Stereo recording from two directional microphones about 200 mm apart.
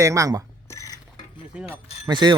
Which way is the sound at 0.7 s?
15° left (ahead or behind).